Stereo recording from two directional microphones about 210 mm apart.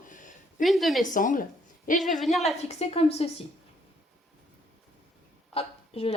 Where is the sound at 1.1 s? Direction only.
40° left (ahead or behind).